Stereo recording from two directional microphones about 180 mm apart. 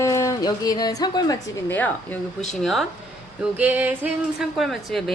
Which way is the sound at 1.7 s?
10° left (ahead or behind).